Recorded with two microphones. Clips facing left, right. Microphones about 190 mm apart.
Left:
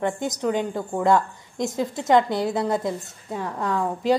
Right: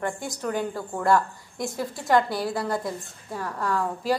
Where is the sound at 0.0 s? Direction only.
20° left (ahead or behind).